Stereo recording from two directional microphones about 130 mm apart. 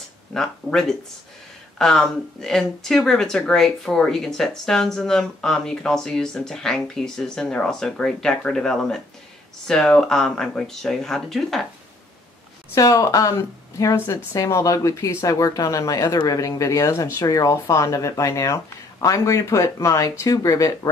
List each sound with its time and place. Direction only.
0.3 s speech: 5° left (ahead or behind)
12.7 s speech: 25° left (ahead or behind)